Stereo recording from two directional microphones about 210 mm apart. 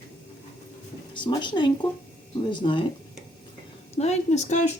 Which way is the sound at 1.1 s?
20° left (ahead or behind).